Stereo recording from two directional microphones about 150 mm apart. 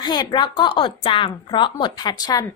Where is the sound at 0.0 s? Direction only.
30° left (ahead or behind).